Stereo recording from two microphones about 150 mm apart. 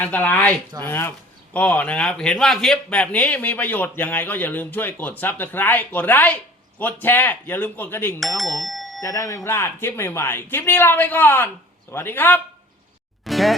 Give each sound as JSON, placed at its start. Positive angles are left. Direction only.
{"t": 0.0, "sound": "a man's voice", "side_deg": 10}
{"t": 8.2, "sound": "speech", "side_deg": 0}
{"t": 9.0, "sound": "a man's voice", "side_deg": 20}
{"t": 13.2, "sound": "music", "side_deg": 0}